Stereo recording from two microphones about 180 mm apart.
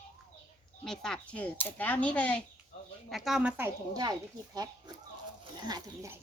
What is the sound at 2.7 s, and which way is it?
Chicken, 35° left (ahead or behind).